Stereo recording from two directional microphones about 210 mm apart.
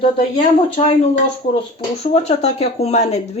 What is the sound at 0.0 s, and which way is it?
Speech, 30° left (ahead or behind).